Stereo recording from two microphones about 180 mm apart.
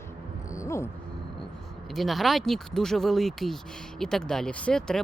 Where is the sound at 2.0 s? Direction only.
Centre (ahead or behind).